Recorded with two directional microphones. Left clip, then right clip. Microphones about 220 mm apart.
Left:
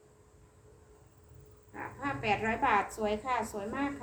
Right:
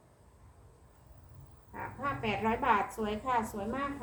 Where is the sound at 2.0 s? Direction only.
15° left (ahead or behind).